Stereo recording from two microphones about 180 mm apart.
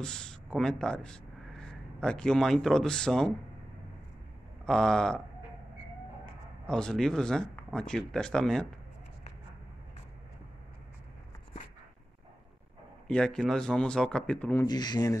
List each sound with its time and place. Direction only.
0.0 s speech: 5° left (ahead or behind)
4.6 s speech: 5° left (ahead or behind)
6.7 s speech: 5° left (ahead or behind)
13.1 s speech: 5° left (ahead or behind)
14.7 s speech: 25° left (ahead or behind)